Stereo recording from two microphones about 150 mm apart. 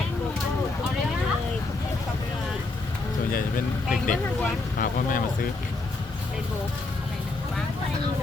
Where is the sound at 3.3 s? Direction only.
70° left (ahead or behind).